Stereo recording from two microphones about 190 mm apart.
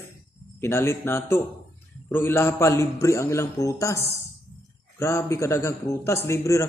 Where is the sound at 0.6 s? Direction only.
15° left (ahead or behind).